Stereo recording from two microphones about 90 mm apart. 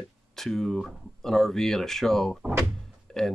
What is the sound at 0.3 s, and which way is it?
Speech, 5° left (ahead or behind).